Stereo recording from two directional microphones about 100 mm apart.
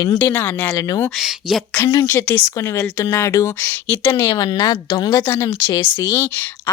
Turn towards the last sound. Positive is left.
turn(degrees=20)  # may be behind; listen again after turning